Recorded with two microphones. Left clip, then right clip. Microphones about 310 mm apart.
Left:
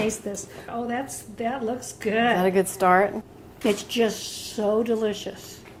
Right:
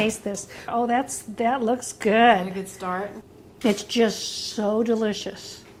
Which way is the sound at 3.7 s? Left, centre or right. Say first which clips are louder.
Right 1 dB; centre.